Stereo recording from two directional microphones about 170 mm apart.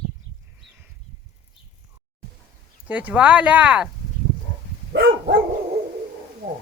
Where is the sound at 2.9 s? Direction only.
10° right (ahead or behind).